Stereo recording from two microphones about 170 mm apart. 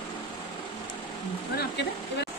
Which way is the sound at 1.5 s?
80° left.